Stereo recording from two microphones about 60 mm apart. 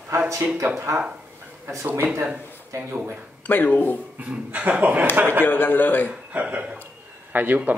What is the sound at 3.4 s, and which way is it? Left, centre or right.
Speech, left.